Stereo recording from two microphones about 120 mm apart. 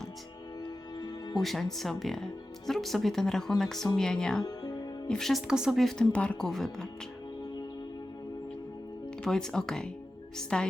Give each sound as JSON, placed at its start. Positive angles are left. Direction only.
{"t": 0.6, "sound": "music", "side_deg": 35}
{"t": 1.4, "sound": "speech", "side_deg": 0}
{"t": 4.4, "sound": "music", "side_deg": 35}
{"t": 5.0, "sound": "speech", "side_deg": 5}
{"t": 9.2, "sound": "a woman's voice", "side_deg": 5}